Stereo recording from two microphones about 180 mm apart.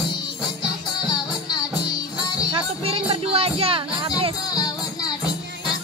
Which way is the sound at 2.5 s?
30° right (ahead or behind).